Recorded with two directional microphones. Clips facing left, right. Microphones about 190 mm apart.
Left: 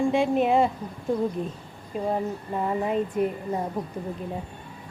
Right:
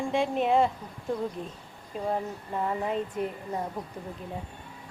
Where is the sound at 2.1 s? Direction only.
15° left (ahead or behind).